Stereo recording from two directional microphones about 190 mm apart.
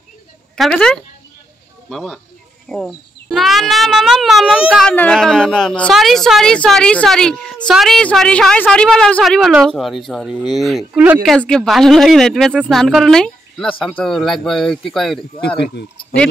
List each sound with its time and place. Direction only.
0.6 s a child's voice: 5° left (ahead or behind)